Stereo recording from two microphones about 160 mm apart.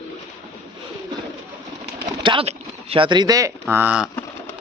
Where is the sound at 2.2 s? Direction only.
35° right (ahead or behind); by 4.1 s 10° right (ahead or behind).